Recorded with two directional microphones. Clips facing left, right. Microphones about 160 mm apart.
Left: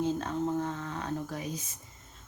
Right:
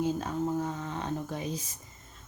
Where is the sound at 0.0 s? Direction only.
10° right (ahead or behind).